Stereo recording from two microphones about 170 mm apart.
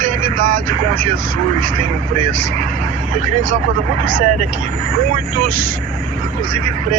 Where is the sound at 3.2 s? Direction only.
50° right (ahead or behind).